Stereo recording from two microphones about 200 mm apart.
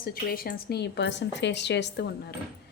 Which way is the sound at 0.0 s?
45° left (ahead or behind).